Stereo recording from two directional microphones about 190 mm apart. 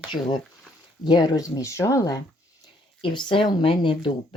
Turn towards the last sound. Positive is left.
turn(degrees=25)  # may be behind; listen again after turning